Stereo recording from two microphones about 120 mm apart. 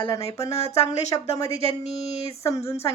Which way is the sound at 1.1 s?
40° left (ahead or behind).